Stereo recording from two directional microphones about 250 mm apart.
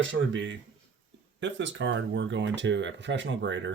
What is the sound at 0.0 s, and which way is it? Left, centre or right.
A man's voice, right.